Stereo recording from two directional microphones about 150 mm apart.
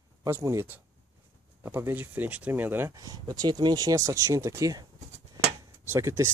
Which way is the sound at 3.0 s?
25° right (ahead or behind).